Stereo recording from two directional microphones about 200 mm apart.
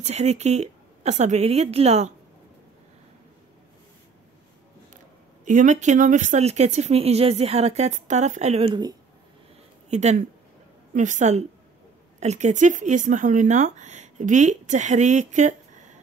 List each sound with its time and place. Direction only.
0.0 s speech: 35° right (ahead or behind)
5.4 s speech: 40° right (ahead or behind); by 8.9 s 25° right (ahead or behind)
9.8 s speech: 35° right (ahead or behind)